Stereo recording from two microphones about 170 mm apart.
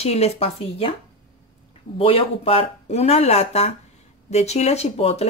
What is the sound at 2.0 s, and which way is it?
Speech, 35° left (ahead or behind).